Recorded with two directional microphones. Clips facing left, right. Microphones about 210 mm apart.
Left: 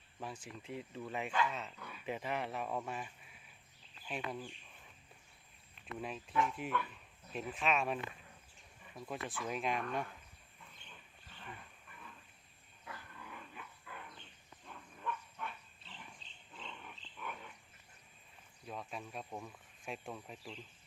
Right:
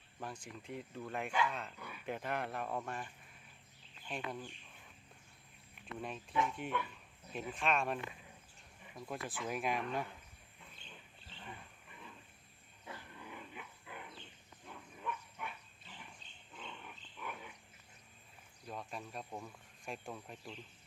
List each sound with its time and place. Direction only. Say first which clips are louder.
0.2 s speech: even; 5° left (ahead or behind)
6.0 s speech: left 1 dB; centre (ahead or behind)
9.0 s speech: even; centre (ahead or behind)
10.8 s dog: right 2 dB; 20° right (ahead or behind)
12.8 s dog: right 1 dB; 20° right (ahead or behind)
16.2 s wild animals: even; 30° left (ahead or behind)
16.6 s a sound: right 1 dB; centre (ahead or behind)
17.2 s dog: even; 5° right (ahead or behind)
18.6 s speech: even; centre (ahead or behind)